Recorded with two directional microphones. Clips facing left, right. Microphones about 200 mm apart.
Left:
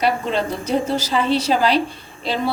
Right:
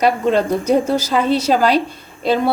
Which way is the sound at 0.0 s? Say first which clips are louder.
Right 5 dB; 45° right (ahead or behind).